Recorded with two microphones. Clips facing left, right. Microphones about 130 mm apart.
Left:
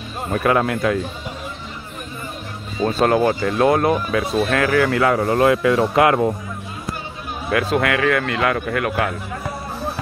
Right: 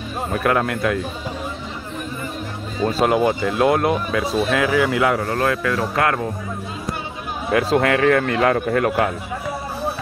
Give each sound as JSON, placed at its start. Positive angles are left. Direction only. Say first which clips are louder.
{"t": 0.3, "sound": "speech", "louder": "left 2 dB", "side_deg": 0}
{"t": 2.8, "sound": "speech", "louder": "left 1 dB", "side_deg": -5}
{"t": 5.2, "sound": "speech", "louder": "left 5 dB", "side_deg": 10}
{"t": 7.5, "sound": "a man's voice", "louder": "right 2 dB", "side_deg": -30}